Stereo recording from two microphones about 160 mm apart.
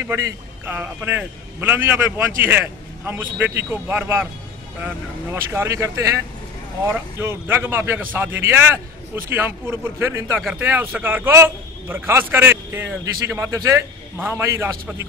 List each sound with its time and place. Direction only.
0.0 s a man's voice: 15° right (ahead or behind)